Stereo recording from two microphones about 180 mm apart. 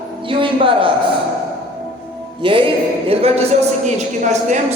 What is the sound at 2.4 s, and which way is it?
A man's voice, 30° right (ahead or behind).